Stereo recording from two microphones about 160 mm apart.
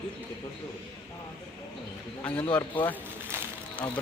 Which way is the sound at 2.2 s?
10° left (ahead or behind).